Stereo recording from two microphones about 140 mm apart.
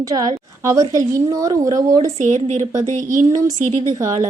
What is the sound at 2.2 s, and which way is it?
A woman's voice, 60° right (ahead or behind).